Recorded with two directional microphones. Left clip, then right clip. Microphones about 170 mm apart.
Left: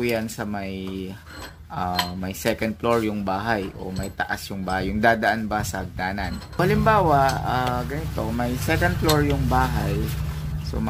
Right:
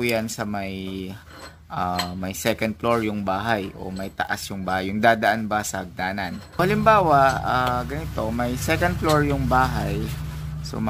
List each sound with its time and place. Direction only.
0.1 s speech: 25° right (ahead or behind)